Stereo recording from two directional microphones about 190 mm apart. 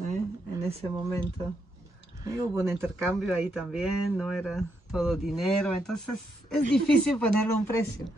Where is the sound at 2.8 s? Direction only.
Centre (ahead or behind).